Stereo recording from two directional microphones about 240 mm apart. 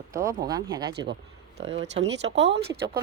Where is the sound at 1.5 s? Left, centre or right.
Right.